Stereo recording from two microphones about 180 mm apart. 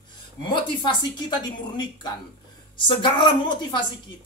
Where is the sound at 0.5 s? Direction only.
25° left (ahead or behind).